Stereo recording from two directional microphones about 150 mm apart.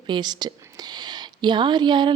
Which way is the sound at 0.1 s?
30° right (ahead or behind).